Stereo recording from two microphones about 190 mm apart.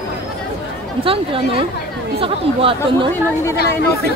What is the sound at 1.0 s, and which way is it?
Speech, 30° right (ahead or behind).